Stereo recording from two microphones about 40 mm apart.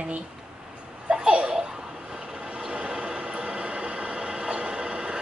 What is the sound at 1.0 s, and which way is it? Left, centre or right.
Babbling, right.